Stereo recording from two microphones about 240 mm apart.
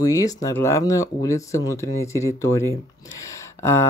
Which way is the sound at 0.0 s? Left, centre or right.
Centre.